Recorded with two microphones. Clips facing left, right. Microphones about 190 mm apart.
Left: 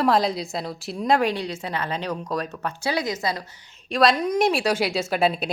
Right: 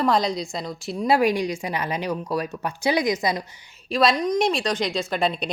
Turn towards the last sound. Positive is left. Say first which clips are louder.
# left 2 dB
turn(degrees=5)  # may be behind; listen again after turning